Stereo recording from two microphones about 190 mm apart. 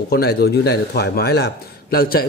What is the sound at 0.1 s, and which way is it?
A man's voice, 55° left (ahead or behind).